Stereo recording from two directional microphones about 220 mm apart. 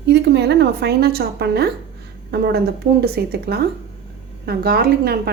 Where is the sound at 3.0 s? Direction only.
45° right (ahead or behind).